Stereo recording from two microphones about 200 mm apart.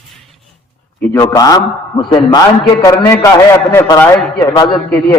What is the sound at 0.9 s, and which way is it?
Speech, 10° left (ahead or behind).